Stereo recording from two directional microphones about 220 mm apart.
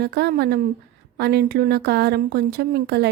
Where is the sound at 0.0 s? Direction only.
45° right (ahead or behind).